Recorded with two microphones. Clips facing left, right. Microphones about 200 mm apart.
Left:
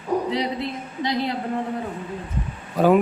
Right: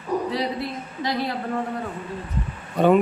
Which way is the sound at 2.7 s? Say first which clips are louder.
Even; centre (ahead or behind).